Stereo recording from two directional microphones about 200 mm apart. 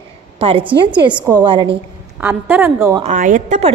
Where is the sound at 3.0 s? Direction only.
40° right (ahead or behind).